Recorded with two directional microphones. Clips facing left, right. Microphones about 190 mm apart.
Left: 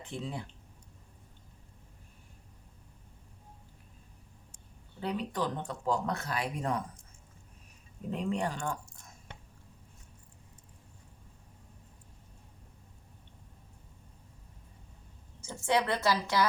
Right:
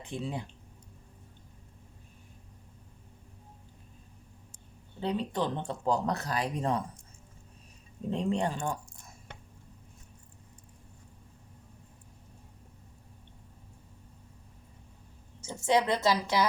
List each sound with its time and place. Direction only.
0.0 s speech: 15° right (ahead or behind)
4.9 s speech: 25° right (ahead or behind)
8.1 s speech: 25° right (ahead or behind)
15.4 s a woman's voice: 15° right (ahead or behind)